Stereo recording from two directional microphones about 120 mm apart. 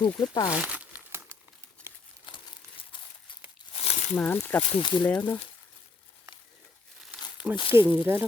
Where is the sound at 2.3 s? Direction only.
45° left (ahead or behind).